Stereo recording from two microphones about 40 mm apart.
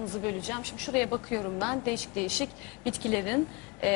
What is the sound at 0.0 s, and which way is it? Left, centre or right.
A woman's voice, centre.